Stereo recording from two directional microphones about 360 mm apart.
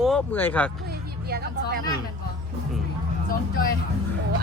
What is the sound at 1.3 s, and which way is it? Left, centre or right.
Speech, right.